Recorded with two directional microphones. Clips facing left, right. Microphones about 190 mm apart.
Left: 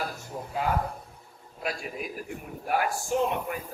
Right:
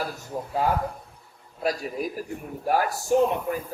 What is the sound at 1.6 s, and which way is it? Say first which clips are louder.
Speech: right 6 dB; 40° right (ahead or behind).